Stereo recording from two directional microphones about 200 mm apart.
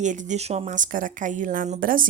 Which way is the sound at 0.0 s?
40° right (ahead or behind).